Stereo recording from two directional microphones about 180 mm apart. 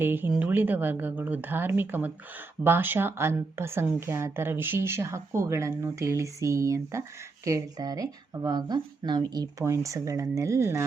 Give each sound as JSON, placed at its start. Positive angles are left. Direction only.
{"t": 0.0, "sound": "speech", "side_deg": -10}